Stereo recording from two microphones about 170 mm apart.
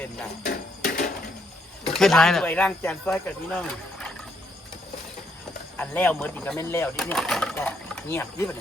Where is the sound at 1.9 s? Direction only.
Centre (ahead or behind).